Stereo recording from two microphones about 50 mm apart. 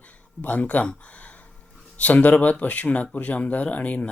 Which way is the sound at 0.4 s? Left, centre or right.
Left.